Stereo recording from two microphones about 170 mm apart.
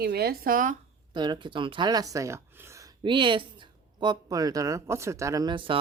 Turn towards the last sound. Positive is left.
turn(degrees=-30)  # may be behind; listen again after turning